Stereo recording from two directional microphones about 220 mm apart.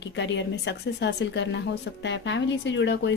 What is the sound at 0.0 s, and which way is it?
Speech, 55° left (ahead or behind).